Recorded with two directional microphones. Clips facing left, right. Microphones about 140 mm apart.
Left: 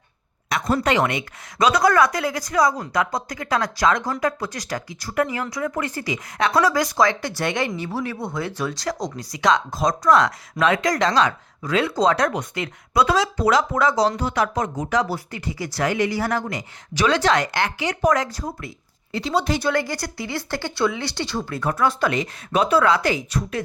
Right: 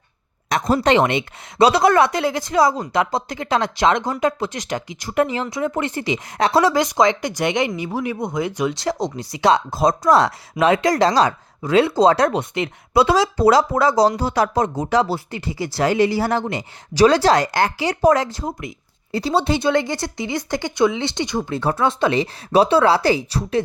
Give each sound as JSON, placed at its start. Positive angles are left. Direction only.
{"t": 0.5, "sound": "speech", "side_deg": -35}
{"t": 21.6, "sound": "speech", "side_deg": -30}